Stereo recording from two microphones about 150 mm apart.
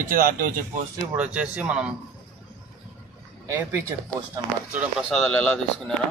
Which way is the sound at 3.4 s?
20° right (ahead or behind).